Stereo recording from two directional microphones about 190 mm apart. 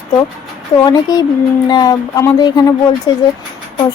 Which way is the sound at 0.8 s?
20° left (ahead or behind).